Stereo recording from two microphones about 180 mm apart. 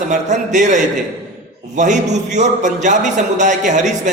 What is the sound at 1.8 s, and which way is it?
A man's voice, 40° right (ahead or behind).